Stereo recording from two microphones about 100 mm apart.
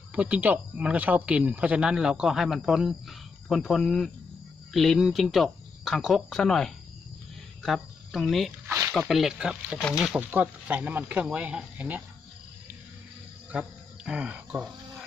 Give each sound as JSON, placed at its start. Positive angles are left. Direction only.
{"t": 0.1, "sound": "speech", "side_deg": -15}
{"t": 8.6, "sound": "a sound", "side_deg": -25}
{"t": 9.0, "sound": "speech", "side_deg": -5}
{"t": 13.5, "sound": "insect", "side_deg": -10}